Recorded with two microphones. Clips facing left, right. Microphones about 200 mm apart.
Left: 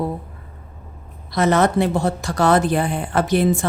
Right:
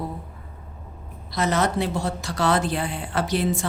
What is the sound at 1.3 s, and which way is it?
Speech, 60° left (ahead or behind).